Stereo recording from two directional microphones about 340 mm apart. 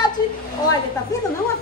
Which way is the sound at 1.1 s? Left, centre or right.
Centre.